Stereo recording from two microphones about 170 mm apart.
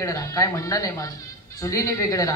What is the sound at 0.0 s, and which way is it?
A man's voice, 20° left (ahead or behind).